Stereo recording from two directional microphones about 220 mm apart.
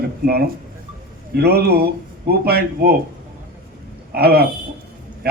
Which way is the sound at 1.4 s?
45° right (ahead or behind).